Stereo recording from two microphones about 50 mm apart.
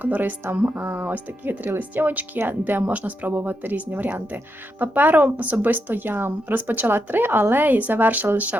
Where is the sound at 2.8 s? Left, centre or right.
Right.